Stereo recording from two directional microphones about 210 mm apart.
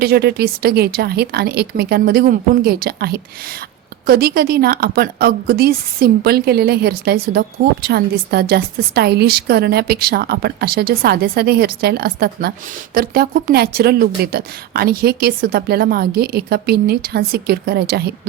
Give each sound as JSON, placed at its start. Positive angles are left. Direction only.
{"t": 0.0, "sound": "a woman's voice", "side_deg": -50}